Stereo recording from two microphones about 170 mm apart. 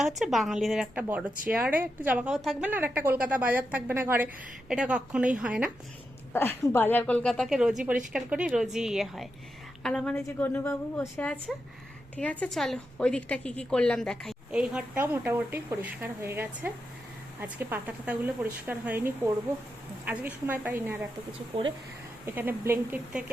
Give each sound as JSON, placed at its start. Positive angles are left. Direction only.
{"t": 0.0, "sound": "speech", "side_deg": 0}
{"t": 6.3, "sound": "a woman's voice", "side_deg": 15}
{"t": 21.5, "sound": "speech", "side_deg": -35}
{"t": 22.3, "sound": "speech", "side_deg": -10}